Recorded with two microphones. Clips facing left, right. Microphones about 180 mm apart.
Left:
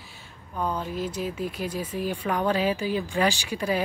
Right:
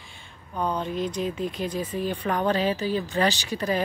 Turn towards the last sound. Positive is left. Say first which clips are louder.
# even
turn(degrees=10)  # may be behind; listen again after turning